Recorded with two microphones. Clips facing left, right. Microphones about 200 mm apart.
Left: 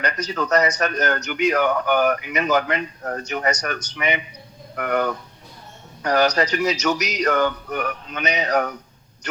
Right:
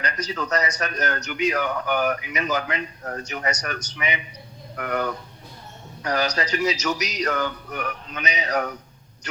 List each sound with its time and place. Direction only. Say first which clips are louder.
0.0 s a man's voice: left 4 dB; 65° left (ahead or behind)